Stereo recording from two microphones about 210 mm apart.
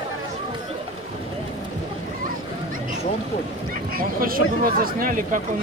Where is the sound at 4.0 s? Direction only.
45° right (ahead or behind).